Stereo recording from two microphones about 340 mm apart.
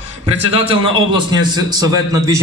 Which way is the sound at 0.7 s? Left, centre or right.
Centre.